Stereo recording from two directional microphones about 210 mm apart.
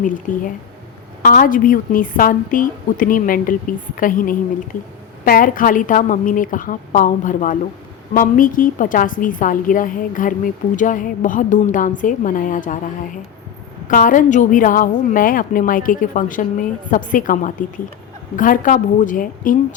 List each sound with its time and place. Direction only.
0.0 s a woman's voice: 40° left (ahead or behind)
13.8 s a woman's voice: 40° left (ahead or behind)